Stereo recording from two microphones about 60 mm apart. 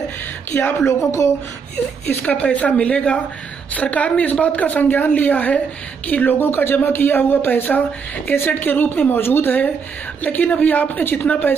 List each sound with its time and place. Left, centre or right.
0.8 s speech: left
1.8 s speech: left
2.2 s a woman's voice: left